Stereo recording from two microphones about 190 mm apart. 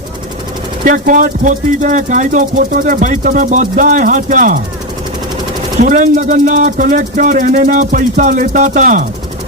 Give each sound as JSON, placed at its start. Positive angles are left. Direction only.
{"t": 0.9, "sound": "speech", "side_deg": -45}
{"t": 5.8, "sound": "speech", "side_deg": -40}